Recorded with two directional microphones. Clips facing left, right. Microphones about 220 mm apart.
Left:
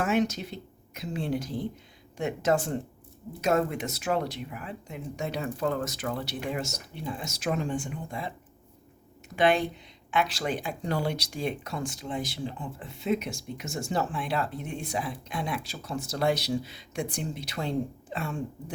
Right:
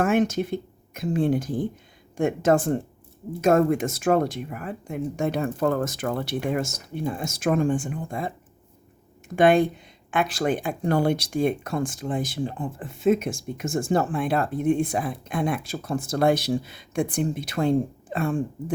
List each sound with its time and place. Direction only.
0.0 s speech: 50° right (ahead or behind)
9.3 s speech: 50° right (ahead or behind)